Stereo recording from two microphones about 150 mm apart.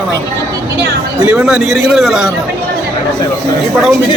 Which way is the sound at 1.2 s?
10° right (ahead or behind).